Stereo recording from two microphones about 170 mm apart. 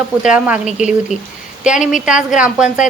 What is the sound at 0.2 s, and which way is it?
A woman's voice, 5° right (ahead or behind).